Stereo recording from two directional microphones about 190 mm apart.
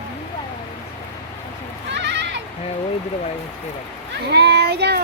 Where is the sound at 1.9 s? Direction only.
65° right (ahead or behind).